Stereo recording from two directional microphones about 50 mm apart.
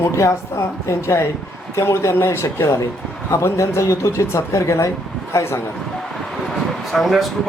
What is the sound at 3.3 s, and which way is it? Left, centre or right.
A man's voice, left.